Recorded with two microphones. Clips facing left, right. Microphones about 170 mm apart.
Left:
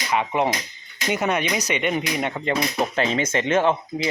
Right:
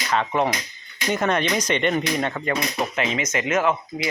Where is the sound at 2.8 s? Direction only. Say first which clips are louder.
Left 2 dB; 35° left (ahead or behind).